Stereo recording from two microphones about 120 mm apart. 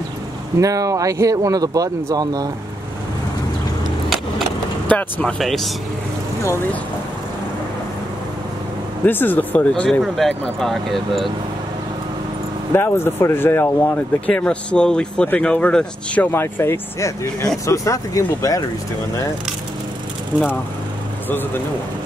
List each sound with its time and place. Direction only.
0.6 s speech: 30° right (ahead or behind)
4.8 s speech: 10° left (ahead or behind)
9.0 s speech: 15° left (ahead or behind)
9.8 s speech: centre (ahead or behind)
12.7 s speech: 20° left (ahead or behind)